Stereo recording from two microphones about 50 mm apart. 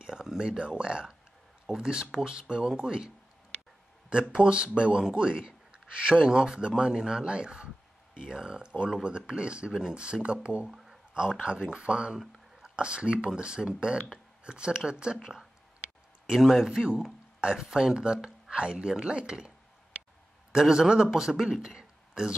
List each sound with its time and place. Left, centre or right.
0.0 s speech: centre
4.1 s a man's voice: centre
10.7 s a sound: centre
11.4 s speech: right
16.3 s speech: centre
20.5 s speech: centre